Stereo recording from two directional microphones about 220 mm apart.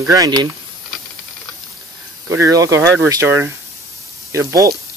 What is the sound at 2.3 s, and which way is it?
Speech, 15° right (ahead or behind).